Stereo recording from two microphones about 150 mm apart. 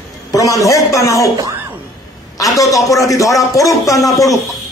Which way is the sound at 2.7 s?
20° left (ahead or behind).